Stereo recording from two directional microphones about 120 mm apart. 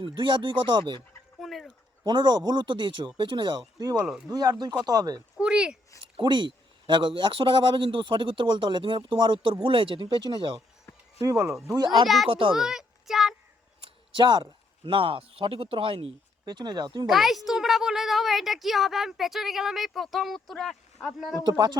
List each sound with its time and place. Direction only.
0.0 s speech: 45° right (ahead or behind)
1.4 s speech: centre (ahead or behind)
2.0 s speech: 40° right (ahead or behind)
5.4 s speech: 10° right (ahead or behind)
6.1 s a man's voice: 40° right (ahead or behind)
11.2 s speech: 30° right (ahead or behind)
12.0 s a woman's voice: centre (ahead or behind)
12.3 s a man's voice: 45° right (ahead or behind)
12.5 s a sound: 5° right (ahead or behind)
13.8 s a sound: 40° right (ahead or behind)
14.8 s a man's voice: 50° right (ahead or behind)
16.5 s speech: 35° right (ahead or behind)
17.1 s a woman's voice: centre (ahead or behind)
21.3 s speech: 35° right (ahead or behind)